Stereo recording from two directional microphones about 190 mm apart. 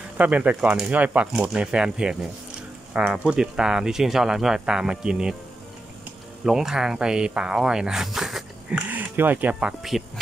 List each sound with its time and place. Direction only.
0.2 s speech: 10° right (ahead or behind)
6.4 s speech: 5° right (ahead or behind)